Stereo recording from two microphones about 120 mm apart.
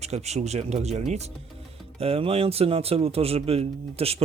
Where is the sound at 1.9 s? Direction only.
55° right (ahead or behind).